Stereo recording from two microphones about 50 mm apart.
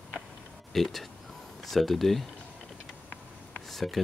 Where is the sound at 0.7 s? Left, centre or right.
Centre.